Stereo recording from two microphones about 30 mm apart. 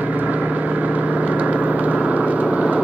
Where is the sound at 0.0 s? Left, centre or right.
Right.